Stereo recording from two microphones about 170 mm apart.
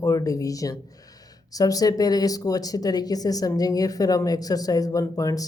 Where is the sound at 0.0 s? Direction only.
20° left (ahead or behind).